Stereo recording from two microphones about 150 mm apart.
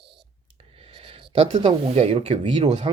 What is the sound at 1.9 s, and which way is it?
Speech, 45° right (ahead or behind).